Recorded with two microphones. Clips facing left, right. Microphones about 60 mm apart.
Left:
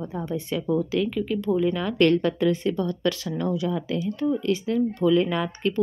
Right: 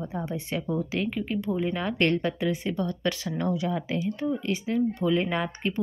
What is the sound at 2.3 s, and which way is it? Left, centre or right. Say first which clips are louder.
Speech: left 5 dB; centre.